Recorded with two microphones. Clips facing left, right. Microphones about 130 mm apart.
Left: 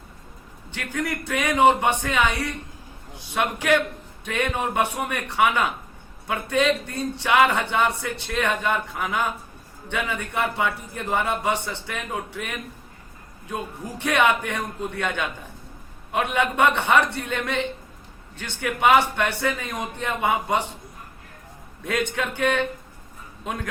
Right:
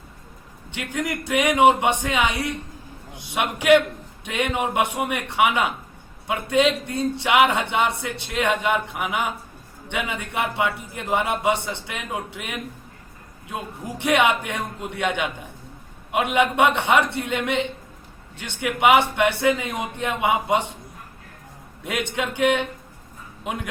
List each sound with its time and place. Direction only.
0.7 s a man's voice: 15° right (ahead or behind)
14.0 s a man's voice: 15° right (ahead or behind)
22.1 s a man's voice: 15° right (ahead or behind)